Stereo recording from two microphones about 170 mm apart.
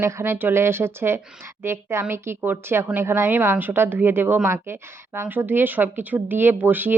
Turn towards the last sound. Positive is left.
turn(degrees=-10)  # may be behind; listen again after turning